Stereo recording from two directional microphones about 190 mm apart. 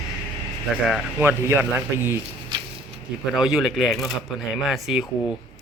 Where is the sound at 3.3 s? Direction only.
5° right (ahead or behind).